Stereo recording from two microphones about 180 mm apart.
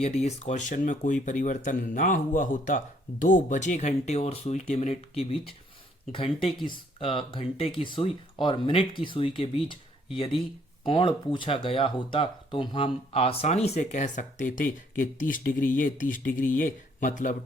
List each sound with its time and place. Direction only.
0.0 s speech: 35° left (ahead or behind)